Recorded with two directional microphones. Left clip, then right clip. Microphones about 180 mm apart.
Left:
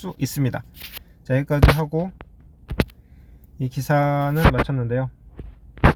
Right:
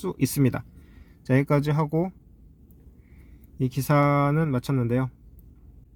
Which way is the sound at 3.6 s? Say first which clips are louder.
Left 2 dB; 15° right (ahead or behind).